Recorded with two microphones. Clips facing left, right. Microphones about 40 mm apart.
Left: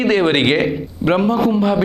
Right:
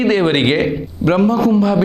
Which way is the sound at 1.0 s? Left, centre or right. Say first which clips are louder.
Right 2 dB; left.